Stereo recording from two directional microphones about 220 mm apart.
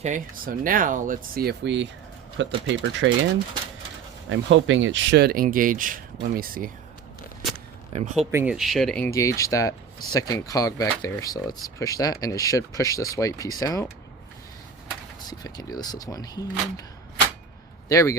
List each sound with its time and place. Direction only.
0.0 s speech: 35° right (ahead or behind); by 3.1 s 55° right (ahead or behind)
4.3 s speech: 60° right (ahead or behind); by 6.7 s 40° right (ahead or behind)
7.9 s speech: 30° right (ahead or behind)
8.3 s speech: 10° right (ahead or behind)
8.5 s speech: centre (ahead or behind)
9.1 s speech: 15° left (ahead or behind)
15.3 s speech: 15° left (ahead or behind)
17.8 s speech: 15° left (ahead or behind)